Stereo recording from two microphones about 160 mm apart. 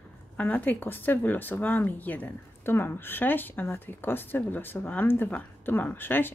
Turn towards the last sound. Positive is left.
turn(degrees=10)  # may be behind; listen again after turning